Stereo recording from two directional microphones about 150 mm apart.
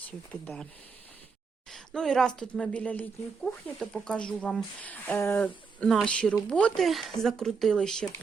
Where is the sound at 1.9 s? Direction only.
5° left (ahead or behind).